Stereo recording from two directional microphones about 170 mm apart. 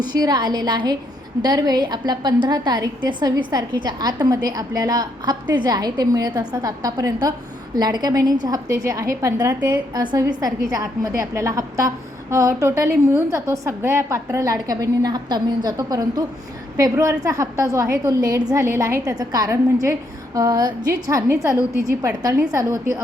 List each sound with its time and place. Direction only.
0.0 s a woman's voice: 25° right (ahead or behind)
9.9 s a woman's voice: 25° right (ahead or behind)